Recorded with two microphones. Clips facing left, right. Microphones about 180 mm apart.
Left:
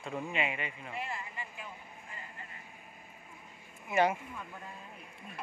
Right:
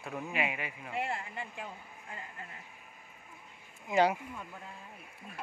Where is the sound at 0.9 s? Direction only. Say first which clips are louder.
Right 6 dB; 70° right (ahead or behind).